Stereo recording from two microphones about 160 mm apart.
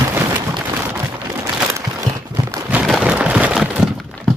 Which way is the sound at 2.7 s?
5° right (ahead or behind).